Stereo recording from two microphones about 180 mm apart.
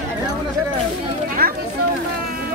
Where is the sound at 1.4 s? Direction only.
55° right (ahead or behind).